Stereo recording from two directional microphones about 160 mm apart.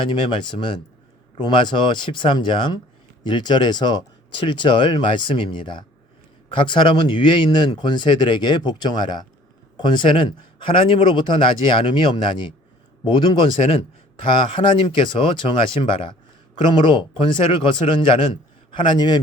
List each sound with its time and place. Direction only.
0.1 s a man's voice: 30° left (ahead or behind)